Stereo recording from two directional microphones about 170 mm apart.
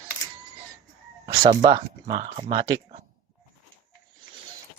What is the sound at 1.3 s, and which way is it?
Speech, 35° right (ahead or behind).